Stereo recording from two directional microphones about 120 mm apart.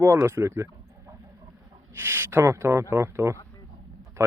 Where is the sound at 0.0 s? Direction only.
25° right (ahead or behind).